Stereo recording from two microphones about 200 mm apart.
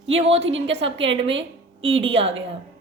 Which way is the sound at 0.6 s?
30° right (ahead or behind).